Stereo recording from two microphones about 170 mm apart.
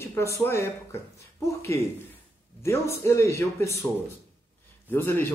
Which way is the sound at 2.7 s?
15° left (ahead or behind).